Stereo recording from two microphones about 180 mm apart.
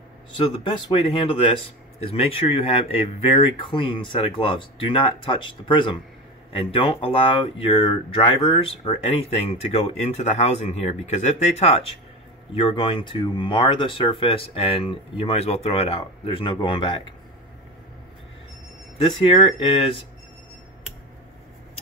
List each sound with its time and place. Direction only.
0.7 s speech: 25° left (ahead or behind)
19.0 s speech: 30° left (ahead or behind)